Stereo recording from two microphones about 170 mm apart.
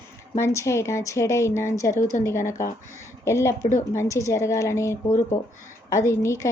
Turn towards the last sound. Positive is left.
turn(degrees=15)  # may be behind; listen again after turning